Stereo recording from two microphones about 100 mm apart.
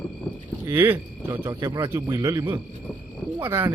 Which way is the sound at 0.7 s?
25° right (ahead or behind).